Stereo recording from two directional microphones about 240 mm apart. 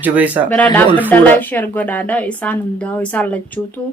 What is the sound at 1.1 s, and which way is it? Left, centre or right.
A woman's voice, centre.